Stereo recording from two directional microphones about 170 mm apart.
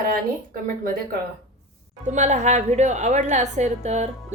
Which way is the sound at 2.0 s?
45° right (ahead or behind).